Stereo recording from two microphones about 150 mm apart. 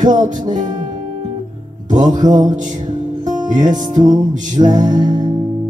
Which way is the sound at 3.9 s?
55° right (ahead or behind).